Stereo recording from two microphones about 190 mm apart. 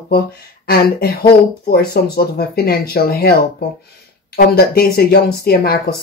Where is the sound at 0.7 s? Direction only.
55° left (ahead or behind).